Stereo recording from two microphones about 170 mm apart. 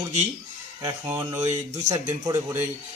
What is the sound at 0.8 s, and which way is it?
A man's voice, 15° right (ahead or behind).